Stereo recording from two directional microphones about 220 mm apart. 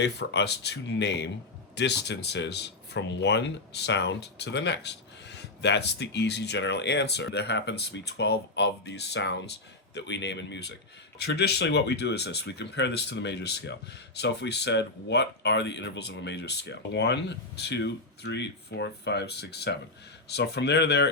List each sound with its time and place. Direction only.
0.0 s speech: 50° left (ahead or behind)